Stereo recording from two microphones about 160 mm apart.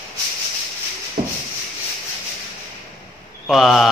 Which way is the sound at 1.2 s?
35° right (ahead or behind).